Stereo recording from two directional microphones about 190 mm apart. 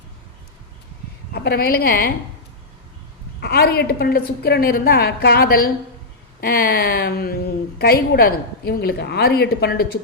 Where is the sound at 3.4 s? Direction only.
55° left (ahead or behind).